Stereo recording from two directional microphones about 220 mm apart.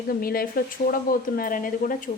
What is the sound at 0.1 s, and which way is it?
Speech, 40° left (ahead or behind).